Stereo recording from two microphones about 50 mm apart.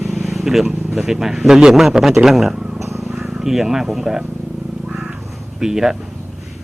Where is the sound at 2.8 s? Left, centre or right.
Right.